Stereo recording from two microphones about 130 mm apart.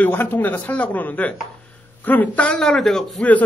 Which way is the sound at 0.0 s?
15° left (ahead or behind).